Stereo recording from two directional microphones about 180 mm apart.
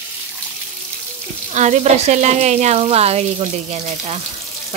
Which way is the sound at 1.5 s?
40° right (ahead or behind).